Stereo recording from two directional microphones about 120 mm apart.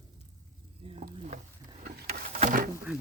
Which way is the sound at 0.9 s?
70° right (ahead or behind).